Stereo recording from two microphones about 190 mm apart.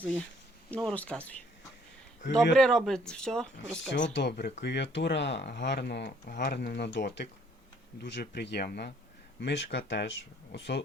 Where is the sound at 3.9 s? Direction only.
65° left (ahead or behind).